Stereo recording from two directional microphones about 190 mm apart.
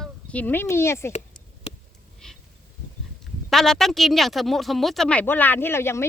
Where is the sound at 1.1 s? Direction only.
35° left (ahead or behind).